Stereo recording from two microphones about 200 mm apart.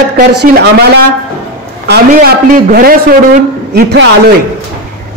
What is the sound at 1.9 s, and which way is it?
A man's voice, 50° right (ahead or behind).